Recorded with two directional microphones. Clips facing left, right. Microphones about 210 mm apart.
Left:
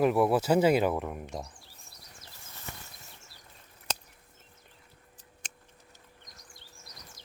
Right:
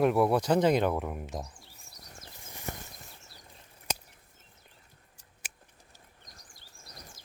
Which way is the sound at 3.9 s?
10° right (ahead or behind).